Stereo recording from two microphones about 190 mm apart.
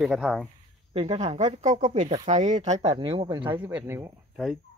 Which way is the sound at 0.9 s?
35° right (ahead or behind).